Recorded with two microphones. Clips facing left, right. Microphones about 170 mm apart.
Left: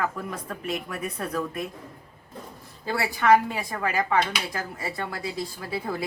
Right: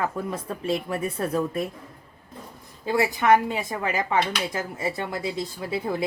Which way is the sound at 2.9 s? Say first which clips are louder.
Right 1 dB; 20° right (ahead or behind).